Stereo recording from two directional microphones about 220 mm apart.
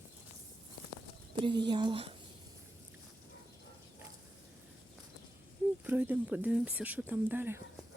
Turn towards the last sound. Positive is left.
turn(degrees=-10)  # may be behind; listen again after turning